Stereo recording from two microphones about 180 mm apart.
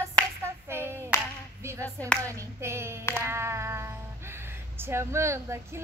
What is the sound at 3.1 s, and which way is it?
Speech, 15° right (ahead or behind).